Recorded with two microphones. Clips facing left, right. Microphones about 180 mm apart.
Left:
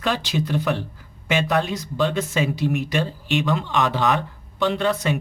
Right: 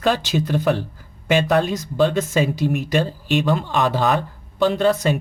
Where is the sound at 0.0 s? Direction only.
45° right (ahead or behind).